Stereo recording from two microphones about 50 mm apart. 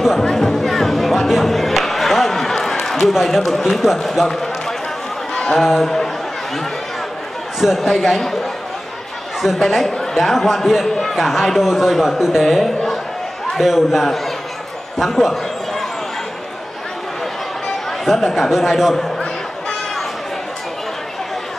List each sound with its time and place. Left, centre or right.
0.2 s music: centre
3.1 s speech: centre
5.3 s a sound: centre
5.6 s a man's voice: centre
7.6 s a man's voice: centre
9.7 s a man's voice: centre
15.0 s a sound: centre
18.0 s a man's voice: centre